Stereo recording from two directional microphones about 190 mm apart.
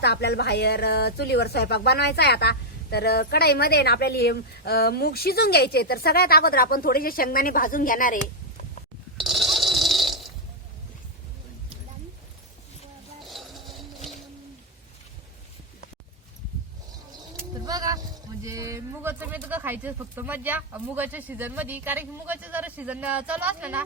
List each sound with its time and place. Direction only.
0.0 s speech: 60° left (ahead or behind); by 8.2 s 45° left (ahead or behind)
9.1 s snoring: centre (ahead or behind)
17.7 s a sound: 20° right (ahead or behind)
18.4 s speech: 15° right (ahead or behind)